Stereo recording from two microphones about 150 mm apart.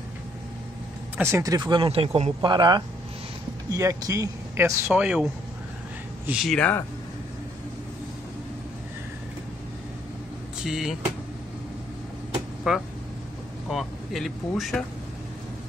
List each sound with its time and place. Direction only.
1.1 s speech: 15° right (ahead or behind); by 2.3 s 40° right (ahead or behind)
2.4 s a man's voice: 30° right (ahead or behind); by 6.6 s 5° right (ahead or behind)
10.6 s speech: 5° right (ahead or behind)
12.7 s speech: 5° right (ahead or behind)